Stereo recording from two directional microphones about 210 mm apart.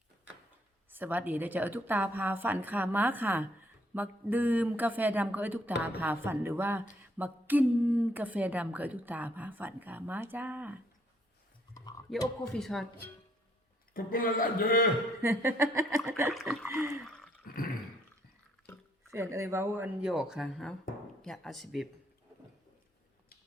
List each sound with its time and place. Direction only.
0.9 s a woman's voice: 10° right (ahead or behind)
12.4 s speech: centre (ahead or behind)
13.9 s a man's voice: 40° left (ahead or behind)
15.2 s a woman's voice: 15° right (ahead or behind)
16.3 s speech: centre (ahead or behind)
16.6 s a woman's voice: 10° right (ahead or behind)
17.4 s a sound: 45° left (ahead or behind)
19.1 s a woman's voice: 15° right (ahead or behind)